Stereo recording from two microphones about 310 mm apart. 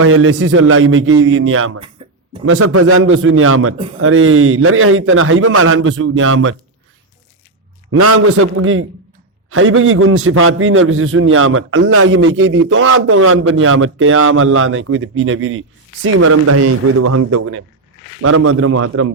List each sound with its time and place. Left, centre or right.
0.0 s a man's voice: right
2.0 s a sound: centre
2.5 s a man's voice: right
7.9 s a man's voice: right